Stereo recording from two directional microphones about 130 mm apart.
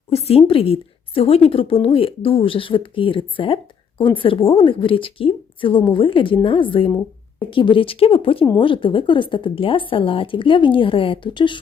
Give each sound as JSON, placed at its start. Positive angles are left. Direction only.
{"t": 0.1, "sound": "a woman's voice", "side_deg": 55}